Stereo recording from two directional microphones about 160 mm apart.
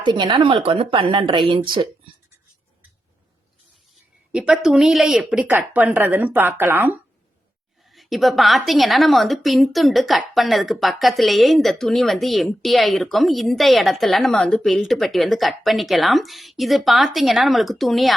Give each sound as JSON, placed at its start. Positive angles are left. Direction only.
{"t": 0.0, "sound": "speech", "side_deg": -30}
{"t": 4.3, "sound": "a woman's voice", "side_deg": -5}
{"t": 7.9, "sound": "a woman's voice", "side_deg": 0}